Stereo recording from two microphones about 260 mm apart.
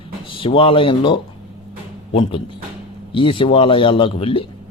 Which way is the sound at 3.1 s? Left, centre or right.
Centre.